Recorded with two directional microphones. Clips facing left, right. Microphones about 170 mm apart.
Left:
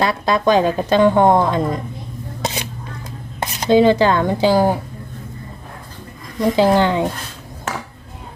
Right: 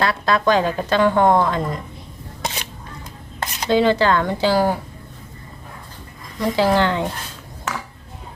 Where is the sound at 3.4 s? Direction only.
15° left (ahead or behind).